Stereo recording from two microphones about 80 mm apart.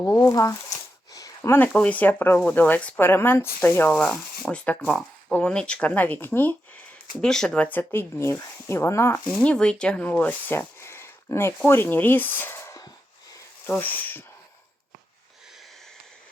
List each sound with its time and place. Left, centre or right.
0.0 s speech: left
1.1 s a sound: left
1.5 s speech: left
3.1 s speech: left
3.9 s speech: centre; by 6.6 s left
7.2 s speech: centre; by 9.2 s left
9.4 s speech: centre
10.5 s a sound: left
11.6 s speech: left